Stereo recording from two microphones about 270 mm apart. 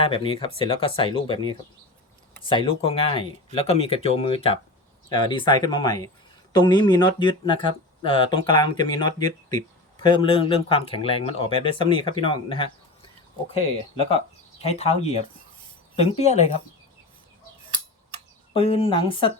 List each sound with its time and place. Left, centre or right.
0.0 s speech: centre
18.5 s speech: left